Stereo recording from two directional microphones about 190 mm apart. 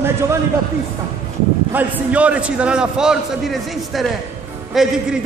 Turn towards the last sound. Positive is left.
turn(degrees=0)  # may be behind; listen again after turning